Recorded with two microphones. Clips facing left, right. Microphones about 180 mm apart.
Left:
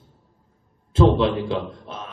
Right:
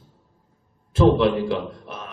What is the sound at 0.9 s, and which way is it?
Speech, 25° left (ahead or behind).